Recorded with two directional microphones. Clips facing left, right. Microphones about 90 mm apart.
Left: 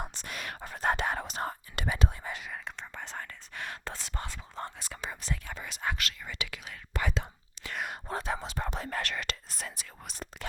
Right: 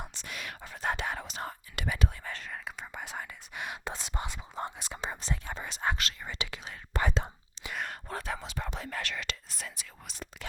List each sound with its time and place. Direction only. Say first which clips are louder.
0.0 s whispering: left 2 dB; 45° left (ahead or behind); by 2.1 s 30° left (ahead or behind)
2.2 s whispering: left 1 dB; 10° left (ahead or behind)
2.6 s whispering: right 1 dB; 10° right (ahead or behind); by 7.3 s 35° right (ahead or behind)
7.9 s whispering: left 3 dB; 25° left (ahead or behind)
8.4 s whispering: left 3 dB; 40° left (ahead or behind)